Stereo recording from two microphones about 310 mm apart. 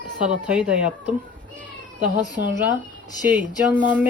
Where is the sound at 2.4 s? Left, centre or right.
Right.